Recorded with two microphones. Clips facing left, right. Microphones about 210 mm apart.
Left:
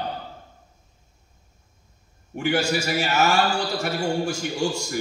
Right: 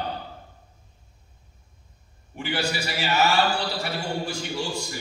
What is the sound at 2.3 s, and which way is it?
A man's voice, 45° left (ahead or behind).